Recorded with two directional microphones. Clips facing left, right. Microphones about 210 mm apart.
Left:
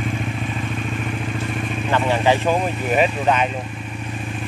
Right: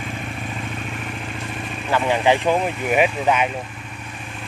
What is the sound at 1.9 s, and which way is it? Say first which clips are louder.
Vehicle: even; 15° right (ahead or behind).